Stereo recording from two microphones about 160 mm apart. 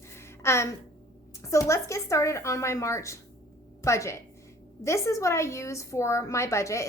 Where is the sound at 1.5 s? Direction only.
20° left (ahead or behind).